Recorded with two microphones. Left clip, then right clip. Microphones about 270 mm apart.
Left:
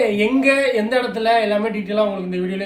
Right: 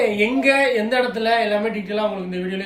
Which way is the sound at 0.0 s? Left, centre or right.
Centre.